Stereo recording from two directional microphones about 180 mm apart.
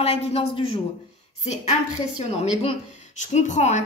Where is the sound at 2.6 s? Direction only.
35° left (ahead or behind).